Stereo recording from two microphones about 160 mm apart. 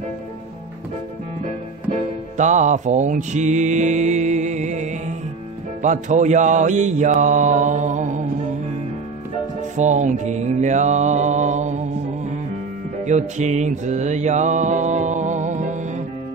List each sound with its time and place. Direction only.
2.3 s music: 50° right (ahead or behind)
9.8 s music: 50° right (ahead or behind)
13.0 s mantra: 45° right (ahead or behind)